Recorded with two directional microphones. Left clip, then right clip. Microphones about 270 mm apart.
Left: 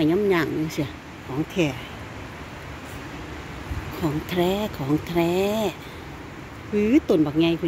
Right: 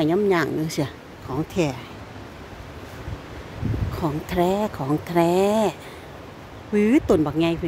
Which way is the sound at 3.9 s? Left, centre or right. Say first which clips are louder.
Right 1 dB; centre.